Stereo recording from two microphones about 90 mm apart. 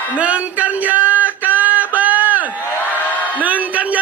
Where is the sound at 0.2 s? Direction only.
15° right (ahead or behind).